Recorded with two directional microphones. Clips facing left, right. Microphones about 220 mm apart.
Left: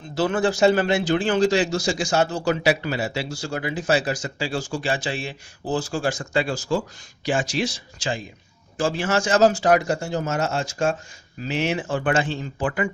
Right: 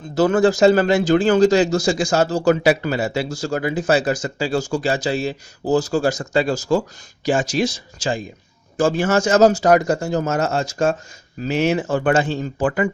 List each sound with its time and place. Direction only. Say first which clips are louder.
0.1 s speech: right 6 dB; 45° right (ahead or behind)